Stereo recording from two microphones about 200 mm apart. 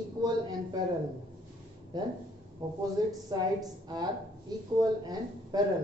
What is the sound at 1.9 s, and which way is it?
A woman's voice, 20° right (ahead or behind).